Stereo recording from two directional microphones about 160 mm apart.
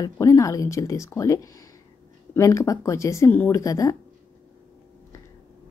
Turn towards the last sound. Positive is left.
turn(degrees=20)  # may be behind; listen again after turning